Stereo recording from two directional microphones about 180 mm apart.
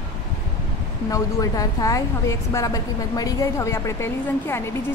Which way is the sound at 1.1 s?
20° left (ahead or behind).